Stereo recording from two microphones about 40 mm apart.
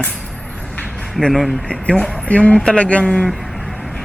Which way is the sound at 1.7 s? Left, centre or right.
Left.